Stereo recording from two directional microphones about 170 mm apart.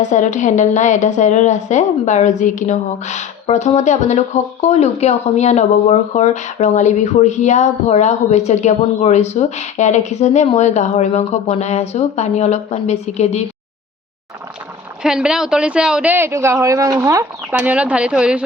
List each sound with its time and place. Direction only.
0.0 s a woman's voice: 45° left (ahead or behind)
15.0 s a man's voice: 5° right (ahead or behind)